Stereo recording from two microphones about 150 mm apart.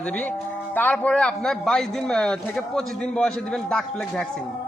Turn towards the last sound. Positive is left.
turn(degrees=5)  # may be behind; listen again after turning